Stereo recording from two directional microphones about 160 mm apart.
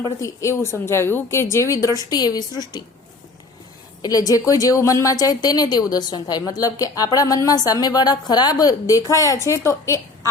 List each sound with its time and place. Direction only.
0.0 s a woman's voice: 20° left (ahead or behind)
4.0 s a woman's voice: 20° left (ahead or behind)